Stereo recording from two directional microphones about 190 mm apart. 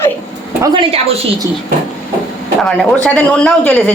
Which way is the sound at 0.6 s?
25° right (ahead or behind).